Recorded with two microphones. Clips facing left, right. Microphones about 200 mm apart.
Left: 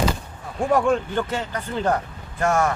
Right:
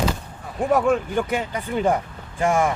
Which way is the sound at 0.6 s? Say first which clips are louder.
Even; 5° right (ahead or behind).